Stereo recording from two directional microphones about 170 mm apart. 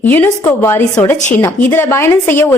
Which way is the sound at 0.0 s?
10° left (ahead or behind).